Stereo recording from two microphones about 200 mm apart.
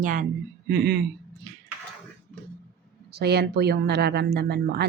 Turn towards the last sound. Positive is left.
turn(degrees=-55)  # may be behind; listen again after turning